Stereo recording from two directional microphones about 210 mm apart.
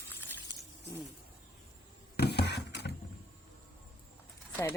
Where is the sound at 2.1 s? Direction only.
50° left (ahead or behind).